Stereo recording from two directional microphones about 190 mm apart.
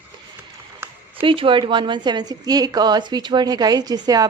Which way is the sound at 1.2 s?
25° right (ahead or behind).